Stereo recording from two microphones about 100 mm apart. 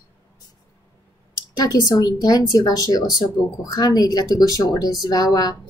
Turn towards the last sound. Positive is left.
turn(degrees=45)  # may be behind; listen again after turning